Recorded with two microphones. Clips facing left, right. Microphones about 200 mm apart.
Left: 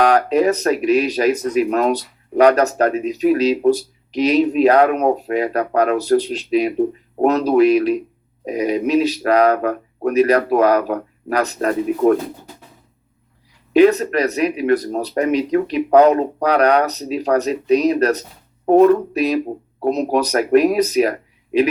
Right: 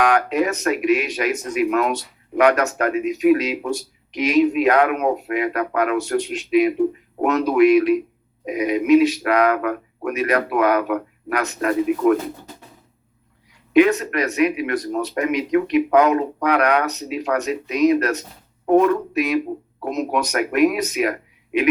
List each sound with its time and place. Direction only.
0.0 s speech: 35° left (ahead or behind)
13.7 s speech: 35° left (ahead or behind)